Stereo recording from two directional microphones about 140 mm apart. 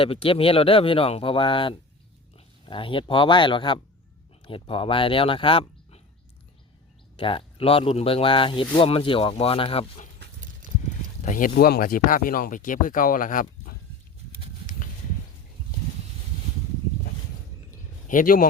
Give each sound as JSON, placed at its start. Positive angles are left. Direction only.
{"t": 0.0, "sound": "speech", "side_deg": 40}
{"t": 7.2, "sound": "speech", "side_deg": 40}
{"t": 11.3, "sound": "speech", "side_deg": 75}
{"t": 17.7, "sound": "a sound", "side_deg": 75}